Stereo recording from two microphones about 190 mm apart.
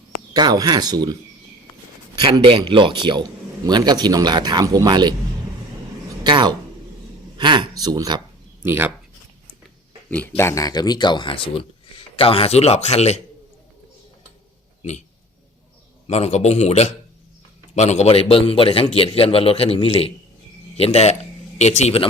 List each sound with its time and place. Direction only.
0.3 s speech: 20° right (ahead or behind)
2.2 s speech: 25° right (ahead or behind)
6.2 s a sound: 25° right (ahead or behind)
8.6 s speech: 10° right (ahead or behind)
10.1 s speech: 10° left (ahead or behind); by 13.1 s 35° left (ahead or behind)
14.8 s speech: 35° left (ahead or behind)
16.0 s speech: 35° left (ahead or behind)